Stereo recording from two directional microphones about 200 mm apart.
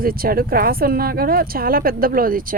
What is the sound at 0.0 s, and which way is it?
A woman's voice, 45° right (ahead or behind).